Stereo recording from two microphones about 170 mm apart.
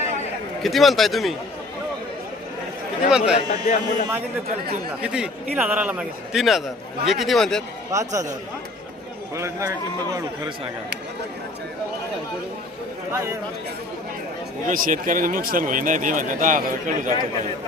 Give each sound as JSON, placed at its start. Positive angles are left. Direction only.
{"t": 0.6, "sound": "a man's voice", "side_deg": 0}
{"t": 3.1, "sound": "a man's voice", "side_deg": -5}
{"t": 3.3, "sound": "speech", "side_deg": 45}
{"t": 5.0, "sound": "a man's voice", "side_deg": -5}
{"t": 7.9, "sound": "speech", "side_deg": -20}
{"t": 9.3, "sound": "a man's voice", "side_deg": -15}
{"t": 13.1, "sound": "a man's voice", "side_deg": -15}
{"t": 14.7, "sound": "speech", "side_deg": -50}